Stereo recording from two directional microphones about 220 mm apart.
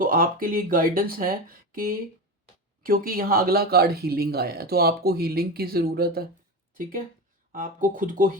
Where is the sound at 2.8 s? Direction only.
40° right (ahead or behind).